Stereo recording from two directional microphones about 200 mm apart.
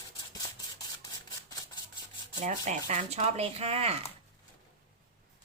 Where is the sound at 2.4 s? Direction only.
35° right (ahead or behind).